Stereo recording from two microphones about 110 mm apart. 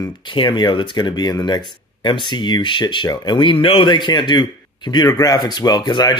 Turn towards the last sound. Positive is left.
turn(degrees=40)  # may be behind; listen again after turning